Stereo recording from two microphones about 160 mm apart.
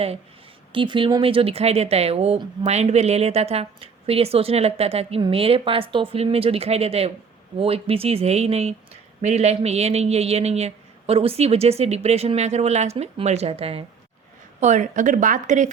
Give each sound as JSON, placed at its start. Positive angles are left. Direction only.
{"t": 0.7, "sound": "speech", "side_deg": -30}
{"t": 14.6, "sound": "speech", "side_deg": -45}